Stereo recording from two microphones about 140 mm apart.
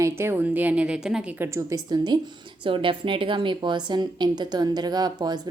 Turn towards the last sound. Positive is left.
turn(degrees=-30)  # may be behind; listen again after turning